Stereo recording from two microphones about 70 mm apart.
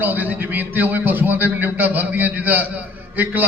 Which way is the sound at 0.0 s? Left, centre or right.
Right.